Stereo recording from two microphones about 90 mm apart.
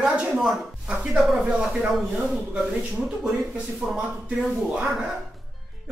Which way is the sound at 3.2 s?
5° right (ahead or behind).